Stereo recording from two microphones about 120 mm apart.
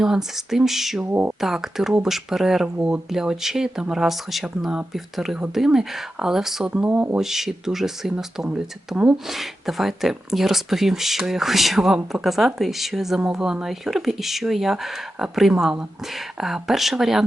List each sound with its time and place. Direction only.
0.0 s speech: 5° right (ahead or behind)
1.0 s speech: 15° right (ahead or behind)
1.4 s speech: 5° right (ahead or behind)
7.2 s speech: 5° right (ahead or behind)